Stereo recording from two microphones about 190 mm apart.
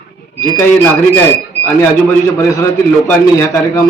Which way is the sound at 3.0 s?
15° left (ahead or behind).